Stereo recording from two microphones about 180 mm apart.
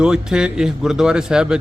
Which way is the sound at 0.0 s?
5° right (ahead or behind).